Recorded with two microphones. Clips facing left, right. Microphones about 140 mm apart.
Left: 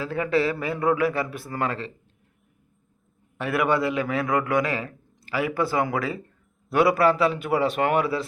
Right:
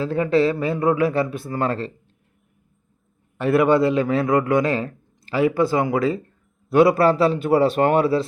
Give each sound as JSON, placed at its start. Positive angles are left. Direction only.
{"t": 0.0, "sound": "a man's voice", "side_deg": -25}
{"t": 3.5, "sound": "a man's voice", "side_deg": -25}